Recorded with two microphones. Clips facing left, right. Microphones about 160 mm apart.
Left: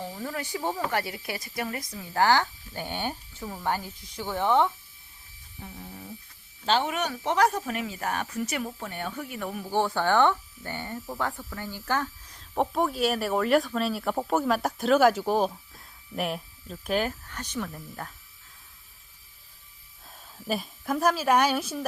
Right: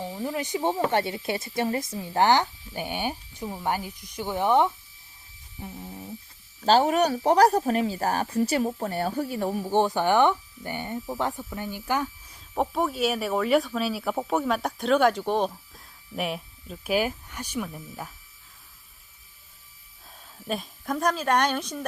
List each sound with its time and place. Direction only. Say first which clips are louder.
0.0 s speech: right 4 dB; 15° right (ahead or behind)
5.5 s snoring: right 4 dB; 20° right (ahead or behind)
6.7 s speech: right 6 dB; 40° right (ahead or behind); by 18.1 s 5° right (ahead or behind)
20.5 s a woman's voice: left 1 dB; 5° left (ahead or behind)